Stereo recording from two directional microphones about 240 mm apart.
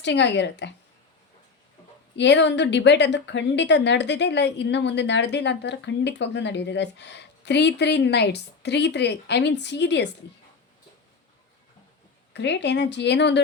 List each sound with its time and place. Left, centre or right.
0.0 s a woman's voice: left
2.1 s a woman's voice: left
12.3 s a woman's voice: left